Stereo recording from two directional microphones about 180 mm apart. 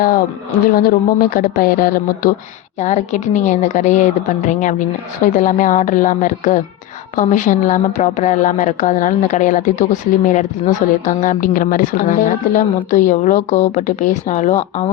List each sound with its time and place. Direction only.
0.7 s speech: 55° left (ahead or behind)
2.7 s speech: 40° left (ahead or behind)